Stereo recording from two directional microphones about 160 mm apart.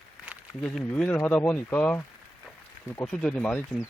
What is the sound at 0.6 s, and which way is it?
Speech, 5° left (ahead or behind).